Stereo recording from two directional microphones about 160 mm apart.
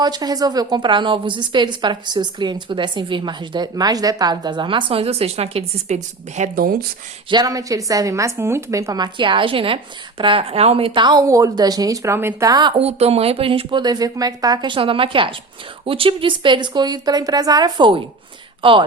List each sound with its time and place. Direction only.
0.0 s a woman's voice: 25° right (ahead or behind); by 6.8 s 65° right (ahead or behind)
7.3 s a woman's voice: 25° right (ahead or behind)